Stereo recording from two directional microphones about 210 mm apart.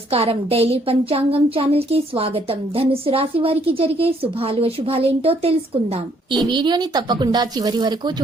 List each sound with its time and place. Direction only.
0.1 s a woman's voice: 25° right (ahead or behind)